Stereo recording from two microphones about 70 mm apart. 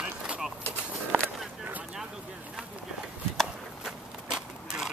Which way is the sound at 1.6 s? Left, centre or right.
Right.